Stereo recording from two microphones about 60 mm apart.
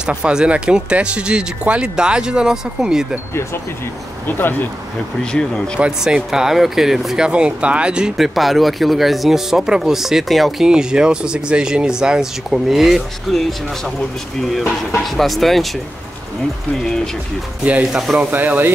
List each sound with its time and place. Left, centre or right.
0.0 s speech: centre
4.3 s speech: left
5.2 s speech: centre
5.8 s speech: centre
8.2 s speech: centre
10.7 s speech: centre
15.0 s speech: centre
16.8 s speech: centre
17.9 s speech: centre
18.2 s speech: right